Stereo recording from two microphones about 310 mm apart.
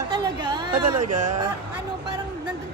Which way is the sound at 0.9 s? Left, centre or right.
Right.